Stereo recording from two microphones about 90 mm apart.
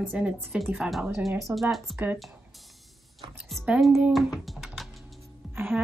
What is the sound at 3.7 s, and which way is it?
Speech, centre (ahead or behind).